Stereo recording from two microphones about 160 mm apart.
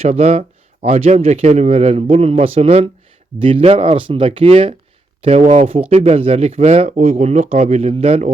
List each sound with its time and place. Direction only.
0.0 s a man's voice: 40° right (ahead or behind)
5.2 s speech: 45° right (ahead or behind)
5.9 s speech: 40° right (ahead or behind)